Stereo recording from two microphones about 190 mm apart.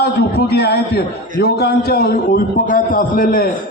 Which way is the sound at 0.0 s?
55° left (ahead or behind).